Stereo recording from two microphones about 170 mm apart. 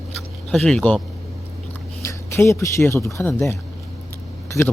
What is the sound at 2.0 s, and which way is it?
Speech, 15° left (ahead or behind).